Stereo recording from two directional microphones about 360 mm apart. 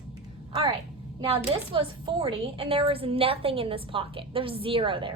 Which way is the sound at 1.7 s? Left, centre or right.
Centre.